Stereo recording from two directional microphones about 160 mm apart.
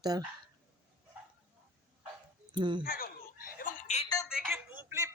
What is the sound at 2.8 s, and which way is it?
Speech, 65° left (ahead or behind).